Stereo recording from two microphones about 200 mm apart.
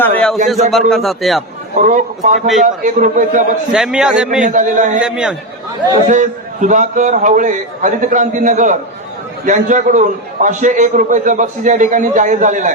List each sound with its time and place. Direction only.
0.0 s a man's voice: 5° left (ahead or behind)
1.8 s a man's voice: 40° right (ahead or behind)
3.7 s a man's voice: 5° right (ahead or behind)
4.4 s a man's voice: 40° right (ahead or behind)
4.9 s a man's voice: 5° right (ahead or behind)
6.1 s a man's voice: 40° right (ahead or behind)